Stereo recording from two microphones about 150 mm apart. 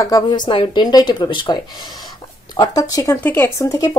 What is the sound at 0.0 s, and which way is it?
Speech, 25° left (ahead or behind).